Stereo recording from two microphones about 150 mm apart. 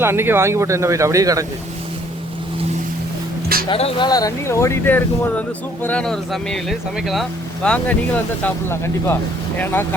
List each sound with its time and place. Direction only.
0.0 s speech: 15° right (ahead or behind)
3.7 s speech: 40° left (ahead or behind); by 9.1 s 15° left (ahead or behind)